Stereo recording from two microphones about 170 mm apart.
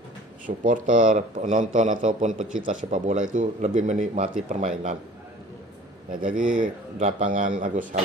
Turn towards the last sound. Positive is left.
turn(degrees=-50)  # may be behind; listen again after turning